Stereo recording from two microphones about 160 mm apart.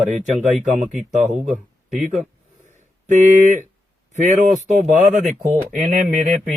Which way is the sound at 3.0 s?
50° right (ahead or behind).